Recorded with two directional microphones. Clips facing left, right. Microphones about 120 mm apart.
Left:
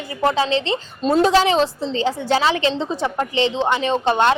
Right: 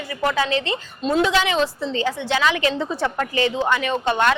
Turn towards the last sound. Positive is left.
turn(degrees=30)  # may be behind; listen again after turning